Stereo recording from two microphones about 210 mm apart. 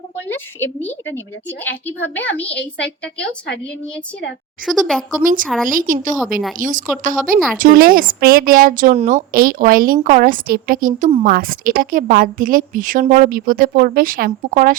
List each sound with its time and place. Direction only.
0.3 s a woman's voice: 10° left (ahead or behind)
4.6 s a child's voice: centre (ahead or behind)
5.2 s a woman's voice: 40° right (ahead or behind)